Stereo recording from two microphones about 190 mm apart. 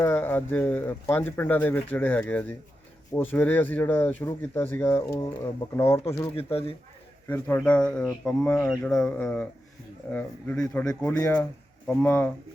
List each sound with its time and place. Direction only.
0.0 s speech: 10° left (ahead or behind)
6.3 s speech: 30° left (ahead or behind)
7.3 s speech: 10° left (ahead or behind)